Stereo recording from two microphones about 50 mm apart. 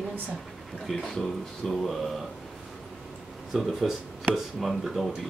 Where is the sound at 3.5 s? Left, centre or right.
Centre.